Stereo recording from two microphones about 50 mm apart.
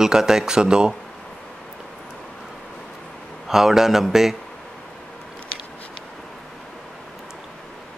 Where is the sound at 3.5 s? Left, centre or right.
Centre.